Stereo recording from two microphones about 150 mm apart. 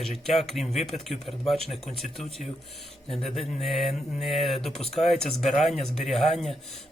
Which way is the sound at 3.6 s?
Centre (ahead or behind).